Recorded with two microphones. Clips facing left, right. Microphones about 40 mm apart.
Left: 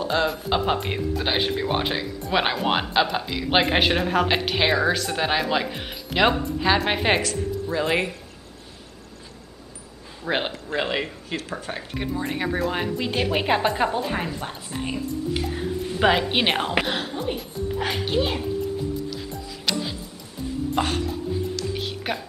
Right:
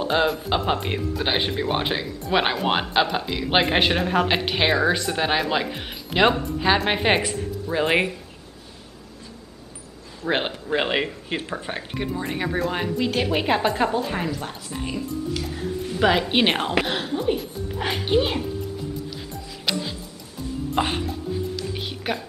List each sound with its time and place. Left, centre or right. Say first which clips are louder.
0.0 s speech: right 2 dB; centre
0.3 s speech: even; centre
7.7 s speech: right 3 dB; right
10.2 s a man's voice: right 1 dB; centre
10.7 s speech: right 4 dB; centre
12.0 s a woman's voice: even; centre
19.0 s music: left 2 dB; centre
20.8 s speech: even; right
21.6 s music: even; centre